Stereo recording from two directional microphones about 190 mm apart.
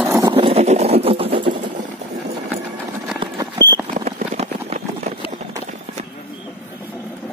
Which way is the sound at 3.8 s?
35° right (ahead or behind).